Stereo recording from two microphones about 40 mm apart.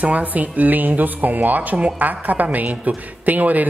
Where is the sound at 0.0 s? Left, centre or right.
Right.